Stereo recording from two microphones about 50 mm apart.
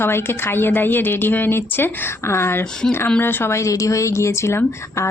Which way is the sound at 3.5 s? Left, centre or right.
Left.